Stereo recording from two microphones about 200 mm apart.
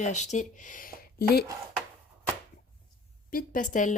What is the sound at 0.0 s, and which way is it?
Speech, 35° left (ahead or behind).